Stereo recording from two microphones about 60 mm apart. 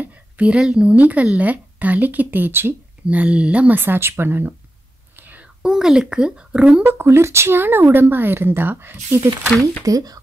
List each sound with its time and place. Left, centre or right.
0.0 s a sound: centre
0.9 s speech: right
3.1 s speech: right
3.7 s speech: right
5.1 s whispering: right
5.4 s speech: centre
6.8 s speech: right
7.1 s speech: right
9.8 s speech: right